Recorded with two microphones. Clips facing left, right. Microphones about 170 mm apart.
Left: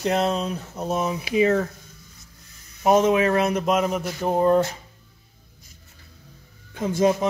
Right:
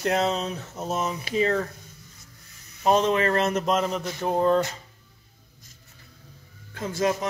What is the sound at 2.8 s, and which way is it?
Speech, 15° left (ahead or behind).